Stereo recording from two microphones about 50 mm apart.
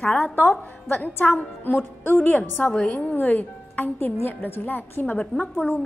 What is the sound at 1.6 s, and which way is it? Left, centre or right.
Speech, left.